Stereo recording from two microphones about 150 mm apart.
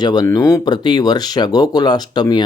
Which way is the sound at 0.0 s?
30° left (ahead or behind).